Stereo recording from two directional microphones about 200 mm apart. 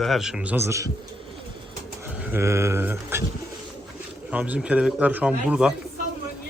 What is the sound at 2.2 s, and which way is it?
Speech, 10° right (ahead or behind).